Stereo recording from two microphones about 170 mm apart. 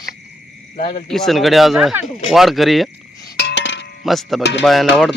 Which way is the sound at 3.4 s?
85° left.